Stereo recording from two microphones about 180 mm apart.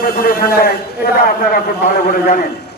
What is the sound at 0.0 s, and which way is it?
Speech, 60° left (ahead or behind).